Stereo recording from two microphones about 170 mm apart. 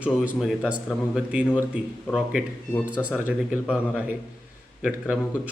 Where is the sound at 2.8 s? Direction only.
10° right (ahead or behind).